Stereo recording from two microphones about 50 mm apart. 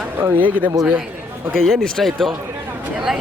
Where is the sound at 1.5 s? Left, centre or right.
Centre.